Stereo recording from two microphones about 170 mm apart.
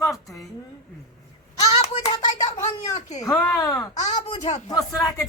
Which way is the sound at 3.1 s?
20° left (ahead or behind).